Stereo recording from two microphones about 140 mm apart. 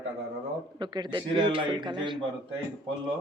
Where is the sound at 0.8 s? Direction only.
35° right (ahead or behind).